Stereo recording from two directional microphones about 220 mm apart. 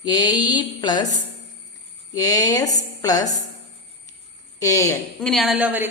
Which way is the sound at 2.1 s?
15° left (ahead or behind).